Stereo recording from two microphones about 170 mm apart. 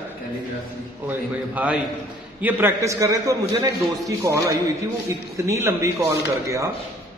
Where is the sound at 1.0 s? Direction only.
10° right (ahead or behind).